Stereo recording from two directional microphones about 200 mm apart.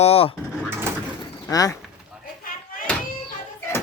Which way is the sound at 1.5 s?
20° left (ahead or behind).